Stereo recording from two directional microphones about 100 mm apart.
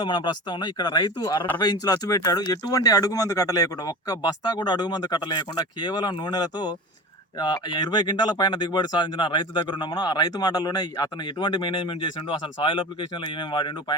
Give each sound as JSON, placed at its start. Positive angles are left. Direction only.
{"t": 0.0, "sound": "speech", "side_deg": 50}